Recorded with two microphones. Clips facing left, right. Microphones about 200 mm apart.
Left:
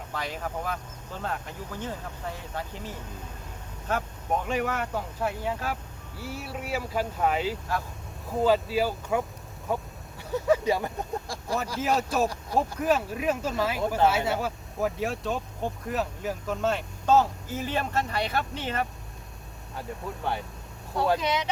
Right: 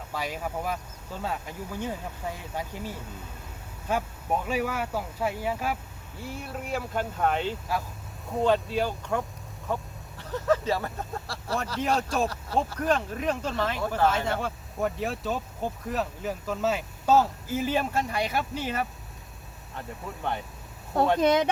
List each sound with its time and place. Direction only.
0.1 s speech: 10° right (ahead or behind)
6.2 s speech: 5° left (ahead or behind)
21.2 s speech: 50° right (ahead or behind)